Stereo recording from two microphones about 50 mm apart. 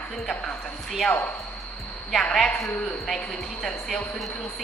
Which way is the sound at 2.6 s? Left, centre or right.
Centre.